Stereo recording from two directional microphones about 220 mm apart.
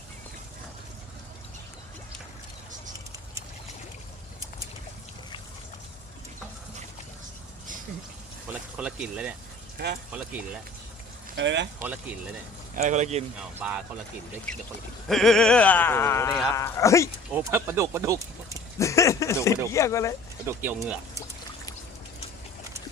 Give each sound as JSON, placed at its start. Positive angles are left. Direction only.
{"t": 8.8, "sound": "speech", "side_deg": -5}
{"t": 9.7, "sound": "speech", "side_deg": -45}
{"t": 10.1, "sound": "speech", "side_deg": -5}
{"t": 11.3, "sound": "speech", "side_deg": -55}
{"t": 11.8, "sound": "speech", "side_deg": -5}
{"t": 12.7, "sound": "speech", "side_deg": -30}
{"t": 13.6, "sound": "speech", "side_deg": -5}
{"t": 15.0, "sound": "speech", "side_deg": 0}
{"t": 17.3, "sound": "speech", "side_deg": -10}
{"t": 18.8, "sound": "speech", "side_deg": 15}
{"t": 20.5, "sound": "speech", "side_deg": -10}